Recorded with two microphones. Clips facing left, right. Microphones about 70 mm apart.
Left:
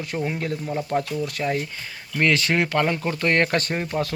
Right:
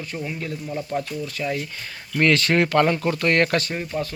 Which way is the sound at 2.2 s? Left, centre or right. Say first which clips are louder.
Right 2 dB; centre.